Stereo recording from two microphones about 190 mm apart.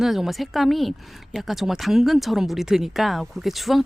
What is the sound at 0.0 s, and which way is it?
Speech, centre (ahead or behind).